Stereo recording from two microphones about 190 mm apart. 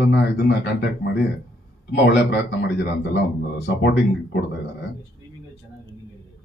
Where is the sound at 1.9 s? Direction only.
70° left (ahead or behind).